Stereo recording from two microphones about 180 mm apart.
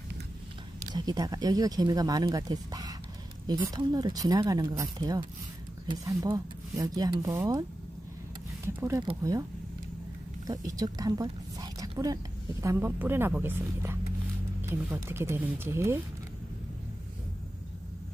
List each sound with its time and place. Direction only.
0.9 s speech: 20° right (ahead or behind)
8.6 s speech: 15° right (ahead or behind)
10.4 s speech: 20° right (ahead or behind)